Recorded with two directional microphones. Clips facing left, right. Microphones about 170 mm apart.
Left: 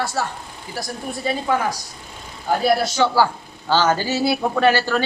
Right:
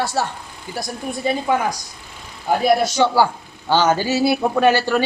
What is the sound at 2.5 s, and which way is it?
A woman's voice, 15° right (ahead or behind).